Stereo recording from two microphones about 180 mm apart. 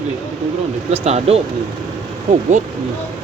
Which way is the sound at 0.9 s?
35° right (ahead or behind).